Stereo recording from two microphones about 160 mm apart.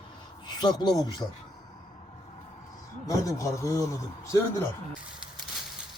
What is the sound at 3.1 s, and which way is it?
A man's voice, 20° left (ahead or behind).